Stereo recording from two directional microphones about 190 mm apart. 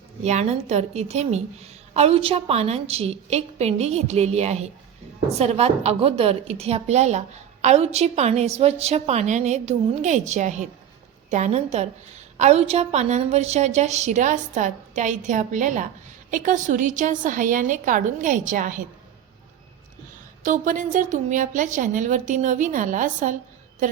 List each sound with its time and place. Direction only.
0.2 s a woman's voice: 35° right (ahead or behind)
20.4 s a woman's voice: 40° right (ahead or behind)